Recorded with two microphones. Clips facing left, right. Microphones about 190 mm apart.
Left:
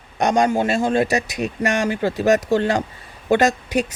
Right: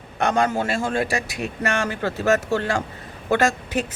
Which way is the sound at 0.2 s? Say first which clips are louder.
Left 3 dB; 15° left (ahead or behind).